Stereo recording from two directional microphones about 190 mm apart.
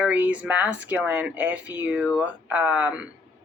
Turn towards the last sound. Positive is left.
turn(degrees=-5)  # may be behind; listen again after turning